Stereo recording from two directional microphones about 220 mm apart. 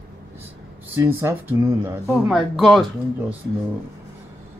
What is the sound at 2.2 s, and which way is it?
Speech, centre (ahead or behind).